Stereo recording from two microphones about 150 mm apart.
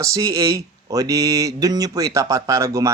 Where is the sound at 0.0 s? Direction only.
20° right (ahead or behind).